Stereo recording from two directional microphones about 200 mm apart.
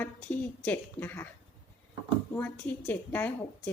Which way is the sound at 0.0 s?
10° left (ahead or behind).